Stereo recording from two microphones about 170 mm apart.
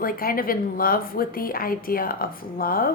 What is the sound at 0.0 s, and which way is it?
A woman's voice, 60° left (ahead or behind).